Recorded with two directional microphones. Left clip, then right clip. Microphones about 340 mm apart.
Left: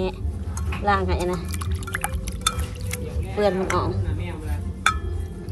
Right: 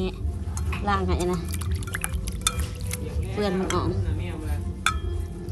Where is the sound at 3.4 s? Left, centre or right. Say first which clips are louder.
Left 5 dB; centre.